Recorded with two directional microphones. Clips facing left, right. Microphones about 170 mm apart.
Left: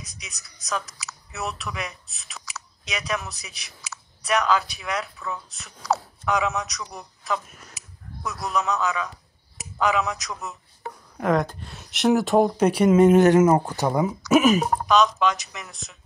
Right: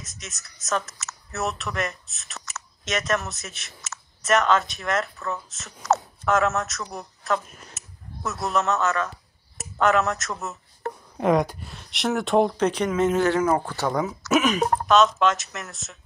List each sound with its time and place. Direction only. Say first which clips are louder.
0.0 s speech: right 2 dB; centre (ahead or behind)
11.1 s speech: right 1 dB; 20° right (ahead or behind)
11.6 s speech: left 5 dB; centre (ahead or behind); by 13.8 s 20° left (ahead or behind)
14.2 s speech: left 4 dB; centre (ahead or behind)